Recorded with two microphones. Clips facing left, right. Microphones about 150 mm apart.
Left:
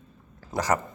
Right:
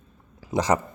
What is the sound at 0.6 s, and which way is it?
Speech, 20° right (ahead or behind).